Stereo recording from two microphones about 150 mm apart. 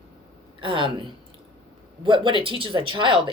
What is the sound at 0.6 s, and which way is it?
Speech, 35° right (ahead or behind).